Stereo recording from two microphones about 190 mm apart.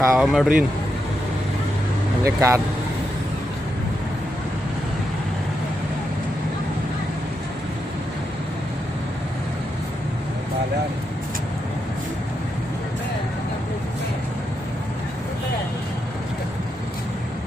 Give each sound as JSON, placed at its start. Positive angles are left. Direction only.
{"t": 0.0, "sound": "speech", "side_deg": 0}
{"t": 2.2, "sound": "speech", "side_deg": -15}